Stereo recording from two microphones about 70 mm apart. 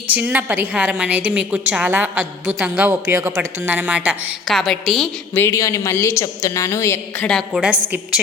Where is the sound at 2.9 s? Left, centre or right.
Right.